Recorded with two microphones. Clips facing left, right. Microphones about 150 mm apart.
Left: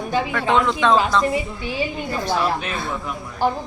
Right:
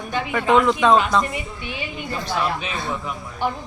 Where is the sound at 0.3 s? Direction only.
Centre (ahead or behind).